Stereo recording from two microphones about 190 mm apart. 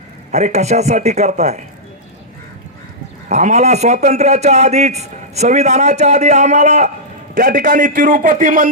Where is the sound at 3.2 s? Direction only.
35° right (ahead or behind).